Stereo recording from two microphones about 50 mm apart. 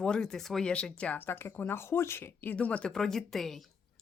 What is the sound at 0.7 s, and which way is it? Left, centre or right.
Speech, centre.